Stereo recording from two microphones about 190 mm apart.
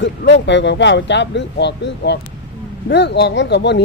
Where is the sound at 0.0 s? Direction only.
70° left (ahead or behind).